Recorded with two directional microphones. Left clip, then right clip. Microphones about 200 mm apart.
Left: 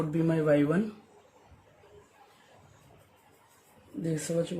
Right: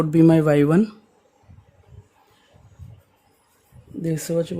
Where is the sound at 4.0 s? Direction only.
60° right (ahead or behind).